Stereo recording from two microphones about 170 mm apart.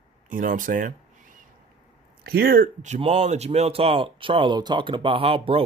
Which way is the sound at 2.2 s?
60° right (ahead or behind).